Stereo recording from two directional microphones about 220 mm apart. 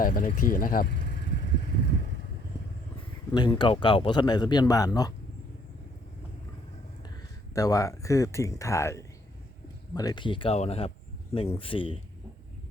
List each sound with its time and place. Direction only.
0.0 s speech: 40° left (ahead or behind)
3.3 s speech: 20° left (ahead or behind)
7.5 s speech: 15° left (ahead or behind)